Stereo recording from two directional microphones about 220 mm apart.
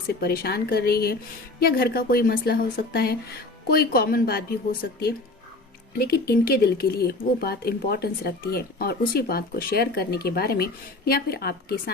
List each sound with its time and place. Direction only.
0.1 s speech: 45° left (ahead or behind)